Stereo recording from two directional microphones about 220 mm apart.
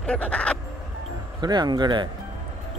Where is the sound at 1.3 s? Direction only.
20° right (ahead or behind).